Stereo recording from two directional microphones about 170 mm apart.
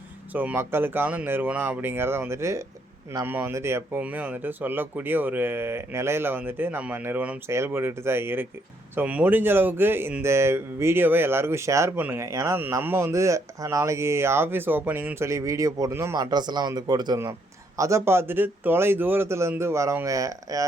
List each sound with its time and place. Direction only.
0.3 s speech: 10° right (ahead or behind)